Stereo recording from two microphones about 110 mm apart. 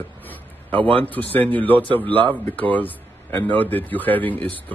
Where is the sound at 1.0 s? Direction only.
15° left (ahead or behind).